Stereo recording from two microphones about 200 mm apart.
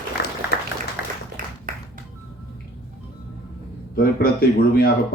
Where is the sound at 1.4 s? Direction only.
45° right (ahead or behind).